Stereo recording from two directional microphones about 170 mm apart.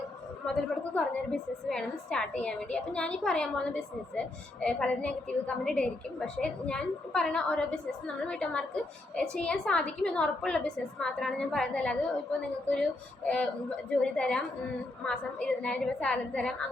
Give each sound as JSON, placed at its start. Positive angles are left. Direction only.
{"t": 0.9, "sound": "a woman's voice", "side_deg": 5}